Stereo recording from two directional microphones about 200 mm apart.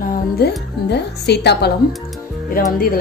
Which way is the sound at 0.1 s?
55° left (ahead or behind).